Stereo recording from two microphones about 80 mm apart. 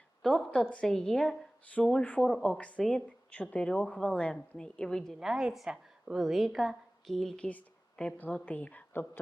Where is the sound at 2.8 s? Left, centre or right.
Centre.